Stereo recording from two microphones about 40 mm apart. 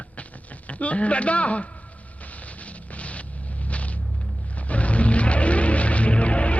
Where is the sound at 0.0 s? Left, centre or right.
Left.